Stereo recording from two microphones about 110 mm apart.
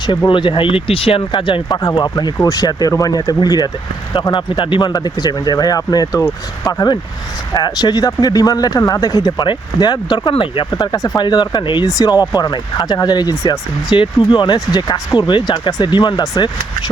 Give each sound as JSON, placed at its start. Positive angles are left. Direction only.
{"t": 0.3, "sound": "speech", "side_deg": 45}
{"t": 2.1, "sound": "speech", "side_deg": 35}
{"t": 10.7, "sound": "speech", "side_deg": 35}
{"t": 11.9, "sound": "speech", "side_deg": 35}
{"t": 13.9, "sound": "speech", "side_deg": 50}
{"t": 15.3, "sound": "speech", "side_deg": 50}